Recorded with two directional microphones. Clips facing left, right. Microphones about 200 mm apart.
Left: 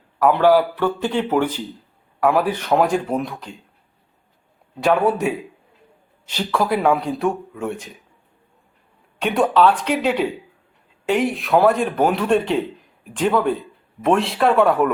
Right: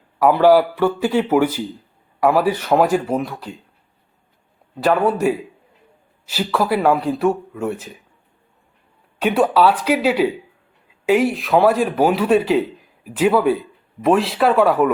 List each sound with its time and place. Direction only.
0.2 s speech: 10° right (ahead or behind)
4.8 s speech: centre (ahead or behind)
9.2 s speech: 5° right (ahead or behind)